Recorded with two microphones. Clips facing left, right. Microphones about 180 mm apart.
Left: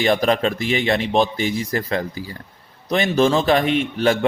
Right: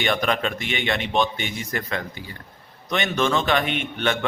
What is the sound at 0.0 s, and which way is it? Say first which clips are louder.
Speech: left 5 dB; 35° left (ahead or behind).